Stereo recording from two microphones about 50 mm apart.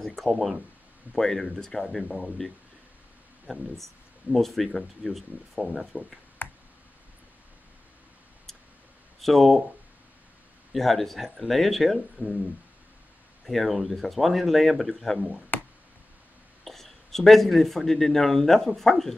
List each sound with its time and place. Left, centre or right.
0.0 s speech: centre
2.0 s speech: centre
3.7 s speech: centre
5.9 s speech: centre
6.4 s clicking: left
9.2 s speech: centre
10.7 s speech: centre
13.5 s speech: centre
15.5 s a sound: left
16.6 s speech: centre